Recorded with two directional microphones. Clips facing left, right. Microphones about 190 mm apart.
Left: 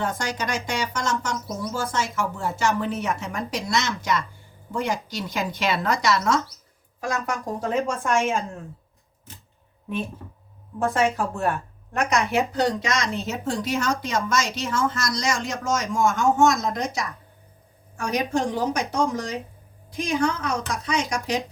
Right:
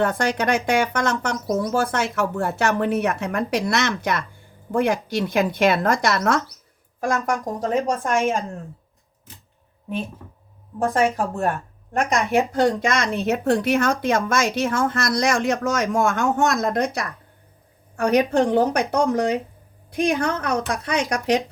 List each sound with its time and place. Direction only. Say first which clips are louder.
0.0 s a woman's voice: right 7 dB; 60° right (ahead or behind); by 8.4 s 40° right (ahead or behind)
10.8 s a woman's voice: right 2 dB; 40° right (ahead or behind)
12.2 s speech: right 4 dB; 50° right (ahead or behind)